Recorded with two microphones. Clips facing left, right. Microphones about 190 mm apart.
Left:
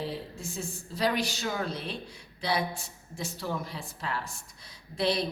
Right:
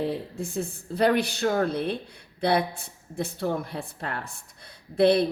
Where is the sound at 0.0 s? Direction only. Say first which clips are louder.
Right 7 dB; 55° right (ahead or behind).